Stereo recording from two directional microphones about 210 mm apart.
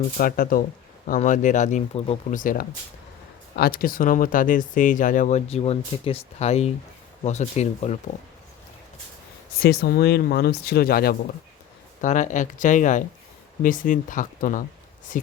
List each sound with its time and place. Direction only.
0.2 s speech: 40° left (ahead or behind)
9.6 s speech: 45° left (ahead or behind)